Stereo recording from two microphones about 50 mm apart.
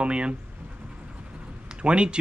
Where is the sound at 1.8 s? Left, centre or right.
Right.